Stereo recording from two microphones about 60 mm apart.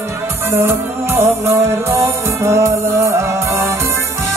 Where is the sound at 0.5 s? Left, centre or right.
Right.